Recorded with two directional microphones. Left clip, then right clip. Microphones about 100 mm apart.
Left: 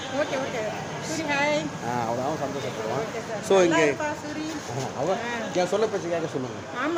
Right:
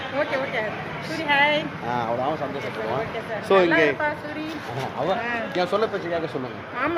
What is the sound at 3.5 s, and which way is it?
Speech, 15° left (ahead or behind).